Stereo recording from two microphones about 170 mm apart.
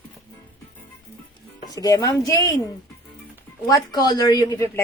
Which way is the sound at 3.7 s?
20° left (ahead or behind).